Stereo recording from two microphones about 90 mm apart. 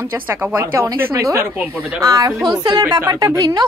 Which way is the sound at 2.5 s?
45° right (ahead or behind).